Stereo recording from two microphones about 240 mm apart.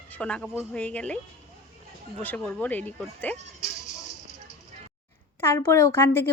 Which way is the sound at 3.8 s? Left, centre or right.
Right.